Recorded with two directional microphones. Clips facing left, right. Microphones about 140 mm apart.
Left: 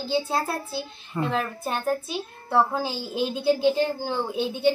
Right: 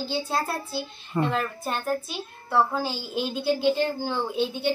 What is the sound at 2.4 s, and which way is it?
Speech, 15° left (ahead or behind).